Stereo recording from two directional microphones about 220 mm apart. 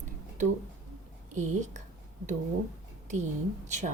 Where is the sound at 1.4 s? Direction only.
35° right (ahead or behind).